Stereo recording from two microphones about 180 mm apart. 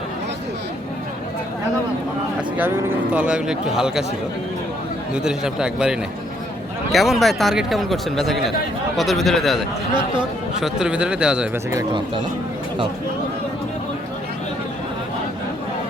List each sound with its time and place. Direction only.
2.6 s speech: 10° right (ahead or behind)
5.1 s speech: 5° right (ahead or behind)
11.7 s speech: 20° right (ahead or behind)